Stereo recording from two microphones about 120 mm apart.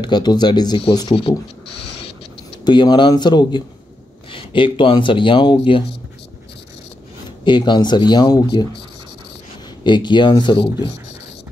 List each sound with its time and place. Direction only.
0.0 s speech: 35° left (ahead or behind)
1.3 s speech: 50° left (ahead or behind)
2.6 s speech: 40° left (ahead or behind)
7.4 s speech: 40° left (ahead or behind)
9.8 s speech: 40° left (ahead or behind)